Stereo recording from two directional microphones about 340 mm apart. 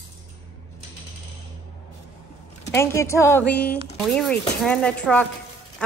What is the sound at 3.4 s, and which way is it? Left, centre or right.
Speech, left.